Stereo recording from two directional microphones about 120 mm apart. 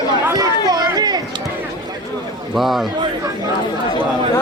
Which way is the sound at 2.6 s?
Centre (ahead or behind).